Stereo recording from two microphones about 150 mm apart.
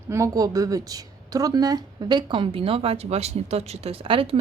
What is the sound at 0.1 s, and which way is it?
Speech, 20° right (ahead or behind).